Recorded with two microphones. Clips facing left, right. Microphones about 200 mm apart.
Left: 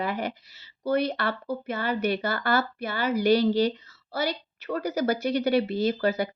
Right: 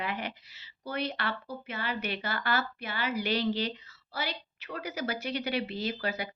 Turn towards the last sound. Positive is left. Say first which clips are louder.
# left 9 dB
turn(degrees=45)  # may be behind; listen again after turning